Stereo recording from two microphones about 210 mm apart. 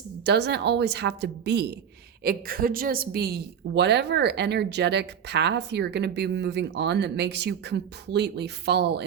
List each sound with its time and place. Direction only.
0.3 s a woman's voice: 50° right (ahead or behind)